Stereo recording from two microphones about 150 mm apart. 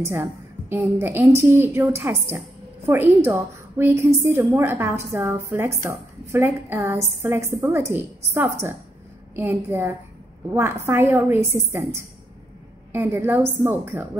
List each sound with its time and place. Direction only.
0.0 s a woman's voice: 15° right (ahead or behind)